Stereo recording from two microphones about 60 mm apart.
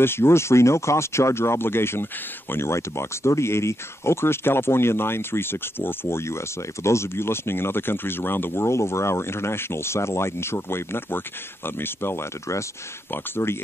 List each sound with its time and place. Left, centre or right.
0.0 s speech: left